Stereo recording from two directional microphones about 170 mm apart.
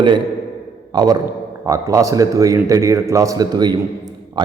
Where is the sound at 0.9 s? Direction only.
25° right (ahead or behind).